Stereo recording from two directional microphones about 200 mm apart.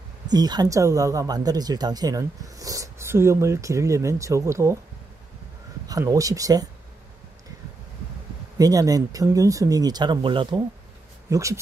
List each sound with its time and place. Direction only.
0.3 s speech: 20° right (ahead or behind)
5.9 s speech: 15° right (ahead or behind)
8.5 s speech: 15° right (ahead or behind)